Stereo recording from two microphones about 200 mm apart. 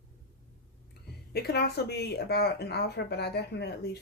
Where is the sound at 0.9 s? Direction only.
55° left (ahead or behind).